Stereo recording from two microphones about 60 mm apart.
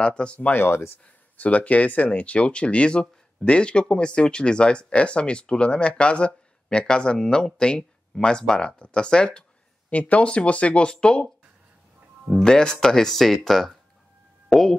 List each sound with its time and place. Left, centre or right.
0.0 s speech: centre
0.7 s speech: left
1.3 s speech: left
12.4 s speech: centre